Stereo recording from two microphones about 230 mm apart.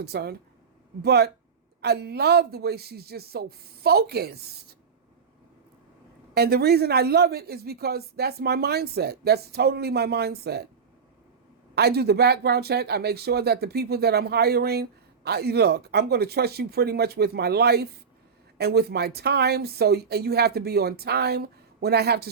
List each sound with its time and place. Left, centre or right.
0.0 s speech: right
6.3 s speech: right
11.7 s speech: right